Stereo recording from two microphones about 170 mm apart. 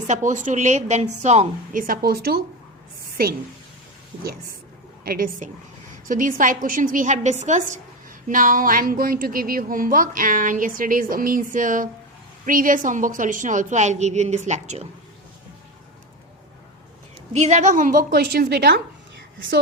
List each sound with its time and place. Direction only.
0.1 s a woman's voice: 45° right (ahead or behind)
1.8 s a woman's voice: 60° right (ahead or behind)
5.0 s a woman's voice: 60° right (ahead or behind); by 14.8 s 40° right (ahead or behind)
17.3 s a woman's voice: 40° right (ahead or behind); by 18.8 s 75° right (ahead or behind)